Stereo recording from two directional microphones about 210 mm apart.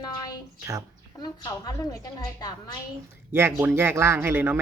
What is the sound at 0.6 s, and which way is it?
Speech, 15° right (ahead or behind).